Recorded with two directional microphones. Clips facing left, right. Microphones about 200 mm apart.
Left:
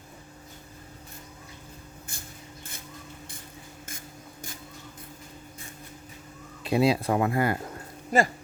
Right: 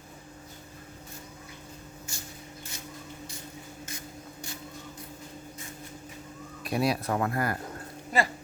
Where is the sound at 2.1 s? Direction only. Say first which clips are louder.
Right 2 dB; 55° left (ahead or behind).